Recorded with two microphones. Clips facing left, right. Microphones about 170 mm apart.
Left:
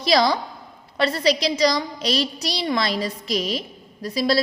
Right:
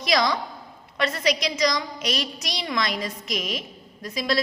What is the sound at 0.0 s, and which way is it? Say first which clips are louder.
A woman's voice: left 4 dB; 30° left (ahead or behind).